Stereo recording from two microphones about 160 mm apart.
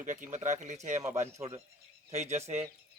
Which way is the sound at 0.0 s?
50° right (ahead or behind).